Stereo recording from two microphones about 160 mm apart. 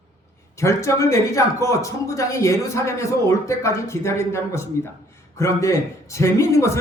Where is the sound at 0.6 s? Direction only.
20° left (ahead or behind).